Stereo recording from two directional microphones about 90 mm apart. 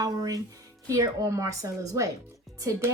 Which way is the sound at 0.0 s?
45° right (ahead or behind).